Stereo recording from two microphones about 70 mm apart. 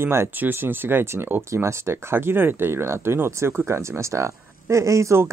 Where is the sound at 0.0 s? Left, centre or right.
Right.